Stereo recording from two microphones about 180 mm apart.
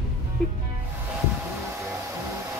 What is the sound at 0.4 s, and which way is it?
Music, 5° left (ahead or behind).